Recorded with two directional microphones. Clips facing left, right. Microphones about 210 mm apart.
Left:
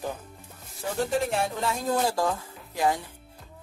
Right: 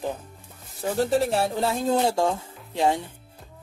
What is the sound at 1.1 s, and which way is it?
A woman's voice, 35° right (ahead or behind).